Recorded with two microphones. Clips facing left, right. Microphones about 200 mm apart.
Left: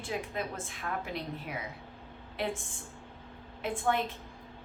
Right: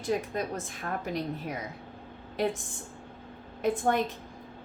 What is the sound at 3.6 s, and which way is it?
Speech, 40° right (ahead or behind).